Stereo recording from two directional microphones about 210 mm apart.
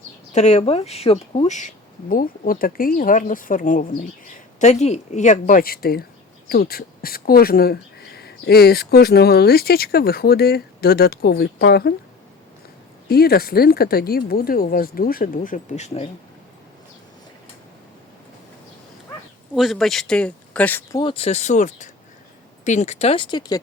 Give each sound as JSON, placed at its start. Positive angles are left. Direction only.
{"t": 0.3, "sound": "speech", "side_deg": 30}
{"t": 13.1, "sound": "speech", "side_deg": 50}
{"t": 19.5, "sound": "speech", "side_deg": 0}
{"t": 21.0, "sound": "speech", "side_deg": 25}